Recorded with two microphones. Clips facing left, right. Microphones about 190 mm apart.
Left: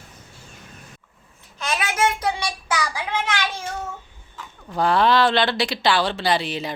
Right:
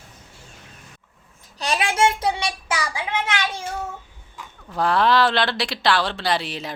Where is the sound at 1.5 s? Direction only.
35° right (ahead or behind).